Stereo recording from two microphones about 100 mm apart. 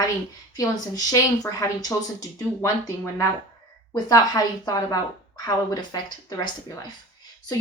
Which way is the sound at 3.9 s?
40° left (ahead or behind).